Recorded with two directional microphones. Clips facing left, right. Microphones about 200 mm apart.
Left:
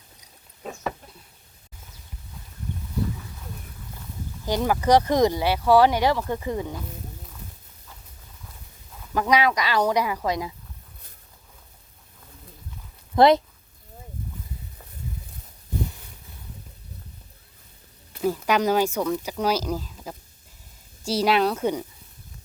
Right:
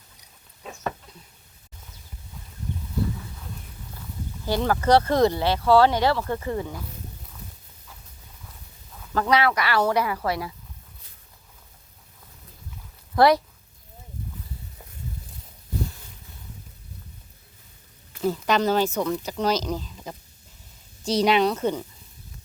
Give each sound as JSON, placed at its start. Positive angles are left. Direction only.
{"t": 4.4, "sound": "speech", "side_deg": 15}
{"t": 9.1, "sound": "speech", "side_deg": 15}
{"t": 13.1, "sound": "speech", "side_deg": 20}
{"t": 18.2, "sound": "speech", "side_deg": 10}